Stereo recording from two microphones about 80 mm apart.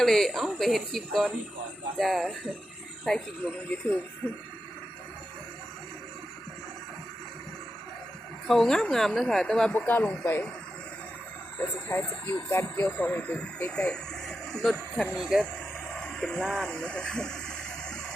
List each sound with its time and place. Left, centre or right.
0.0 s speech: centre
3.7 s speech: centre
8.4 s speech: centre
9.7 s speech: left
10.0 s speech: centre
11.9 s speech: left; by 15.0 s centre
15.1 s speech: centre
15.9 s a sound: centre